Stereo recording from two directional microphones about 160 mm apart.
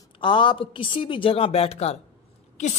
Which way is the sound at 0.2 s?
30° left (ahead or behind).